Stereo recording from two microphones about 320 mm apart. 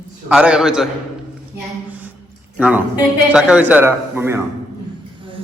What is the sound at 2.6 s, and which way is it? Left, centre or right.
A man's voice, centre.